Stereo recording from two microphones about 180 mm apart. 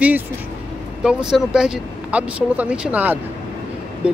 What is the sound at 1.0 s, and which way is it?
Speech, 5° right (ahead or behind).